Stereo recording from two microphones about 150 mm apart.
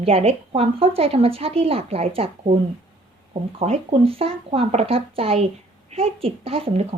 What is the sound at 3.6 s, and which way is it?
Speech, 40° right (ahead or behind).